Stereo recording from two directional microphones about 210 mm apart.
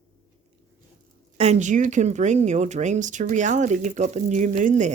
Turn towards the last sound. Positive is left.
turn(degrees=-35)  # may be behind; listen again after turning